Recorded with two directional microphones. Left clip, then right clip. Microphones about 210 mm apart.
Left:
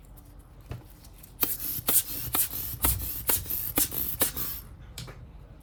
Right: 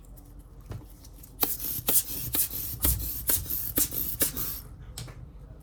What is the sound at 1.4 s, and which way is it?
Rub, centre (ahead or behind).